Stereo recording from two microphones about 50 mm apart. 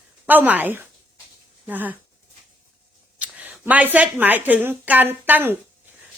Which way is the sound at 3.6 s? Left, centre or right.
Right.